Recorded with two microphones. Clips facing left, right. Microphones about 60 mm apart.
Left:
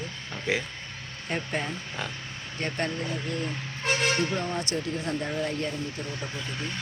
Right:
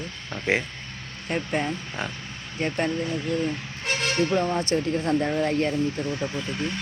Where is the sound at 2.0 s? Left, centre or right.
Right.